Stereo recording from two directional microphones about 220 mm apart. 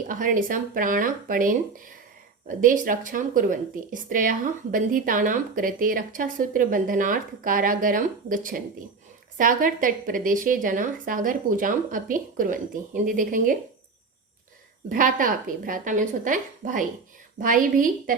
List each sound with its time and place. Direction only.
0.1 s speech: 35° right (ahead or behind)
2.6 s speech: 40° right (ahead or behind)
14.8 s speech: 40° right (ahead or behind)